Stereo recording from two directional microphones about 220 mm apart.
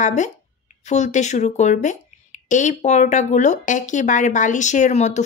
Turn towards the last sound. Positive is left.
turn(degrees=30)  # may be behind; listen again after turning